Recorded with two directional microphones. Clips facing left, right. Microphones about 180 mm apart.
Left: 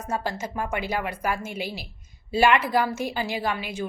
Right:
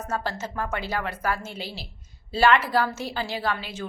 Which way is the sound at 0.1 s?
15° left (ahead or behind).